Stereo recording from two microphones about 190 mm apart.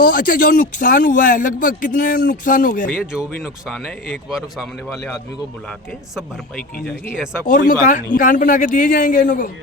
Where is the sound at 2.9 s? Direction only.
5° right (ahead or behind).